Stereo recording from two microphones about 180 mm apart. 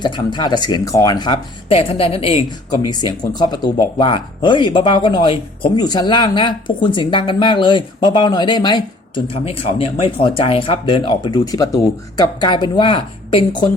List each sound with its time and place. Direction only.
0.0 s speech: 25° left (ahead or behind)